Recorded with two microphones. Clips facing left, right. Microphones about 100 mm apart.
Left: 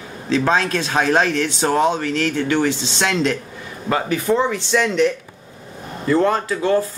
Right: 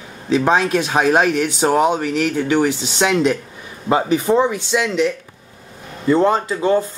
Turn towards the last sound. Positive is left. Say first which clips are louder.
# right 1 dB
turn(degrees=0)  # may be behind; listen again after turning